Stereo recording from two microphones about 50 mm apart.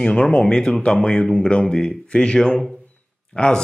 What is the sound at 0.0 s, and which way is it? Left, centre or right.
Speech, centre.